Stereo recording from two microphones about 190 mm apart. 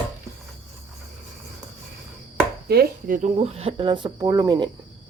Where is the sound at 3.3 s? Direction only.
35° right (ahead or behind).